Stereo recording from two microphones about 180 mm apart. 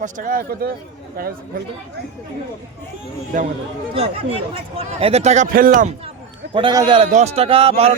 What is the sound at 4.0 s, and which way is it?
A man's voice, 35° right (ahead or behind).